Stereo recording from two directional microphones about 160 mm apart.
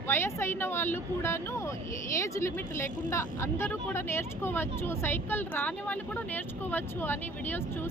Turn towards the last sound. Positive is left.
turn(degrees=15)  # may be behind; listen again after turning